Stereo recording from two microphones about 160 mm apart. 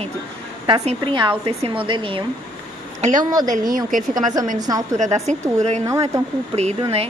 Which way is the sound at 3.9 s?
55° right (ahead or behind).